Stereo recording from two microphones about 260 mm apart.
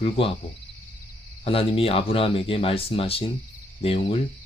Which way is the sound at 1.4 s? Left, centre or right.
Left.